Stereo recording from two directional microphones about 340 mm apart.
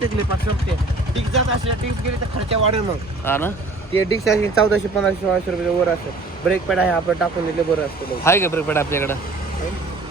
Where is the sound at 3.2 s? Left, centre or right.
Centre.